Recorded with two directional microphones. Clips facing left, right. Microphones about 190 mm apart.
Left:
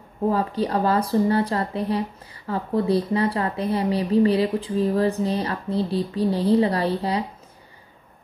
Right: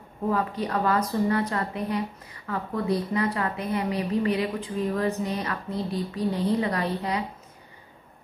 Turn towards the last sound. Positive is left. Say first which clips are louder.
# left 4 dB
turn(degrees=30)  # may be behind; listen again after turning